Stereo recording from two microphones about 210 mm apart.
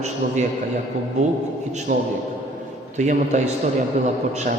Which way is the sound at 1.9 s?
35° right (ahead or behind).